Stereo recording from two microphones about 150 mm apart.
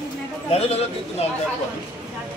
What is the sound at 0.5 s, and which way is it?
Speech, 40° left (ahead or behind).